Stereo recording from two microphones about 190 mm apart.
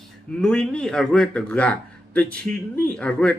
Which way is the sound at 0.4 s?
5° left (ahead or behind).